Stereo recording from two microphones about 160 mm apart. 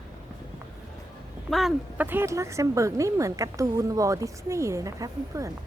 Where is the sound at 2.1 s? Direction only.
15° right (ahead or behind).